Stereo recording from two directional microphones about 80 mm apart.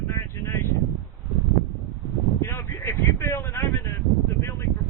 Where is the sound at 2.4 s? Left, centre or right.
Left.